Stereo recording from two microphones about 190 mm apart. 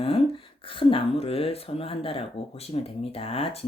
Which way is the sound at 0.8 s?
30° left (ahead or behind).